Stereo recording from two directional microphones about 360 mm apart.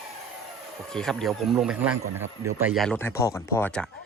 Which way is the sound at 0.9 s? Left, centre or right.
Centre.